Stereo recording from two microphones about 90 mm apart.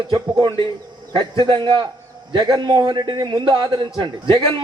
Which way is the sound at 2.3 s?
50° right (ahead or behind).